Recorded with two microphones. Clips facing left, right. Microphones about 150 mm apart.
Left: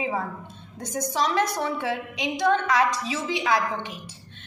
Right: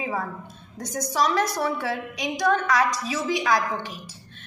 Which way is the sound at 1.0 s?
25° left (ahead or behind).